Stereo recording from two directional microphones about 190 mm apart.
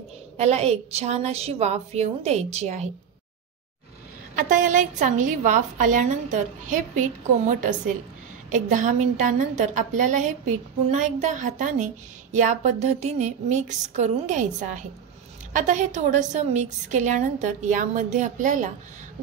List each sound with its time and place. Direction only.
0.4 s a woman's voice: 35° right (ahead or behind)
4.4 s a woman's voice: 40° right (ahead or behind)
10.9 s a woman's voice: 40° right (ahead or behind)